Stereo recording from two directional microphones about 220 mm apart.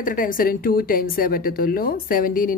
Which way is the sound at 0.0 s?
40° left (ahead or behind).